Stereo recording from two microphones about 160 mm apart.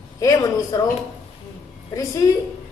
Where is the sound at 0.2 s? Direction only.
20° left (ahead or behind).